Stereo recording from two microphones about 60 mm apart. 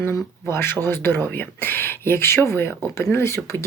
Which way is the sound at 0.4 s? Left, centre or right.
Left.